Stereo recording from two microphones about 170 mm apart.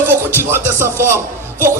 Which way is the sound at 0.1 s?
15° right (ahead or behind).